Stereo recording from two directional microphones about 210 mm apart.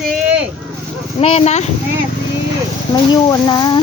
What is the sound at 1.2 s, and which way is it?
Speech, 30° left (ahead or behind).